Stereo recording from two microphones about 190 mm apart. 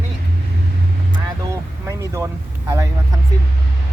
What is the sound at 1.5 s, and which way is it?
Vehicle, 15° right (ahead or behind).